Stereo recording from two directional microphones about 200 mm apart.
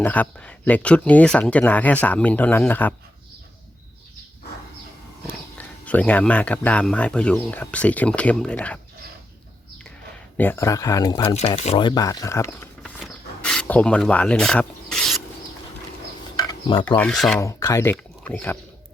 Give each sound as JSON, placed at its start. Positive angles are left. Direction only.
{"t": 0.0, "sound": "speech", "side_deg": 5}
{"t": 5.5, "sound": "speech", "side_deg": 5}
{"t": 10.3, "sound": "speech", "side_deg": 10}
{"t": 11.3, "sound": "speech", "side_deg": 35}
{"t": 13.0, "sound": "a sound", "side_deg": 0}
{"t": 16.4, "sound": "a sound", "side_deg": 20}
{"t": 17.0, "sound": "speech", "side_deg": 0}
{"t": 17.4, "sound": "speech", "side_deg": 15}